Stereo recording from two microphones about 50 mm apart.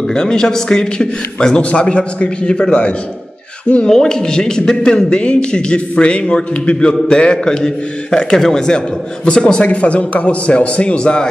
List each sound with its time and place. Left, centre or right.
0.1 s a man's voice: centre